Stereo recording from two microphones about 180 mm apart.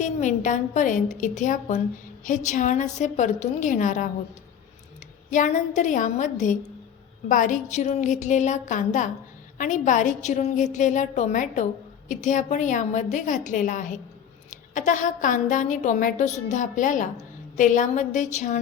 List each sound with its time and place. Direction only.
0.0 s a woman's voice: 45° left (ahead or behind)
5.3 s a woman's voice: 45° left (ahead or behind)